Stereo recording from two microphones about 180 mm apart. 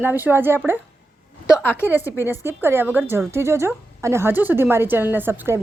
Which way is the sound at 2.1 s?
10° right (ahead or behind).